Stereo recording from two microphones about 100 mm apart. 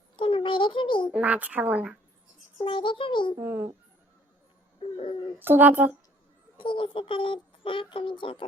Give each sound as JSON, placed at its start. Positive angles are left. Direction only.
{"t": 0.2, "sound": "a sound", "side_deg": 60}
{"t": 1.1, "sound": "a woman's voice", "side_deg": -15}
{"t": 2.6, "sound": "speech", "side_deg": 55}
{"t": 3.3, "sound": "speech", "side_deg": -25}
{"t": 4.8, "sound": "speech", "side_deg": 65}
{"t": 5.4, "sound": "speech", "side_deg": -20}
{"t": 6.6, "sound": "speech", "side_deg": 55}